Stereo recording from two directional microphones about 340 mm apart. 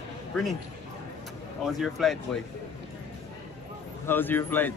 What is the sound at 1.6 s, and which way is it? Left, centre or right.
Speech, centre.